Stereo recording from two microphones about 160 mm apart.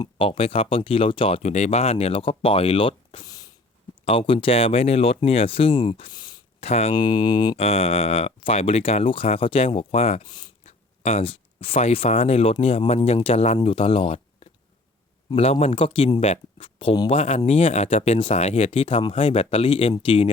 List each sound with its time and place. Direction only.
0.0 s speech: 35° left (ahead or behind)
6.7 s speech: 40° left (ahead or behind)
6.9 s speech: 30° left (ahead or behind)
7.5 s speech: 40° left (ahead or behind)
10.7 s speech: 40° left (ahead or behind)